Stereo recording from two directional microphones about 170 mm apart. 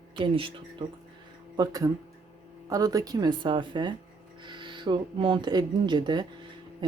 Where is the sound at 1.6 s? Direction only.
20° right (ahead or behind).